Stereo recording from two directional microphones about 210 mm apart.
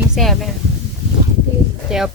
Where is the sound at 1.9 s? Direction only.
Centre (ahead or behind).